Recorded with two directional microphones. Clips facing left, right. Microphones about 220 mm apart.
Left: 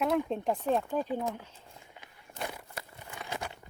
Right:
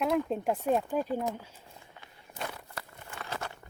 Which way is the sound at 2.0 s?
15° left (ahead or behind).